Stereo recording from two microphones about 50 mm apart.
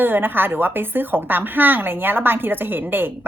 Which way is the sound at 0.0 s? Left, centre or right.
Right.